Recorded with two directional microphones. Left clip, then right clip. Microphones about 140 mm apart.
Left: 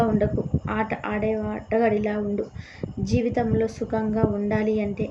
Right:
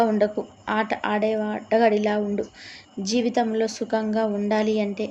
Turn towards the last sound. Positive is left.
turn(degrees=-20)  # may be behind; listen again after turning